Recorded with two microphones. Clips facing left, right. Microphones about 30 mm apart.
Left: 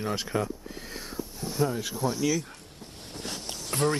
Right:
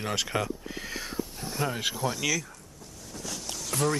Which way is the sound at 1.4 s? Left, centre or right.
Centre.